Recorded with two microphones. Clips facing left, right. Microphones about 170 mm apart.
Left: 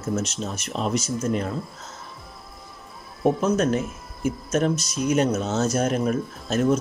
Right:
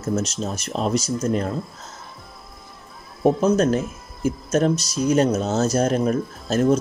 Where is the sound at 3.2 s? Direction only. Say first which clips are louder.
Right 3 dB; 35° right (ahead or behind).